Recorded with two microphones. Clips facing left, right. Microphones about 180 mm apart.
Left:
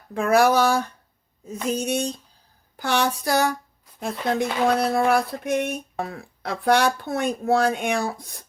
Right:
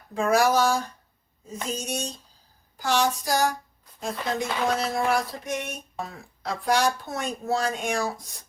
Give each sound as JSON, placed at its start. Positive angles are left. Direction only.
{"t": 0.1, "sound": "speech", "side_deg": 60}